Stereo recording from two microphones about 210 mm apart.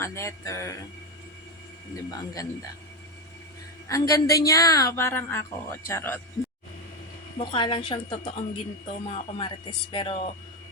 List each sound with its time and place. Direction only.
0.0 s a woman's voice: 15° left (ahead or behind)
2.0 s a woman's voice: 15° left (ahead or behind)
3.8 s a woman's voice: 15° left (ahead or behind)
7.3 s a woman's voice: 25° left (ahead or behind)